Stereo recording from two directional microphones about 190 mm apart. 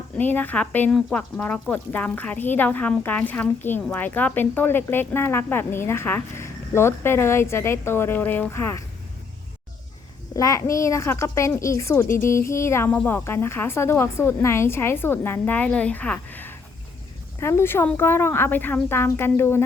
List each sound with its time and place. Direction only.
0.2 s speech: 10° left (ahead or behind)
10.3 s speech: 15° left (ahead or behind)
12.0 s speech: 45° left (ahead or behind)
12.5 s speech: 15° left (ahead or behind)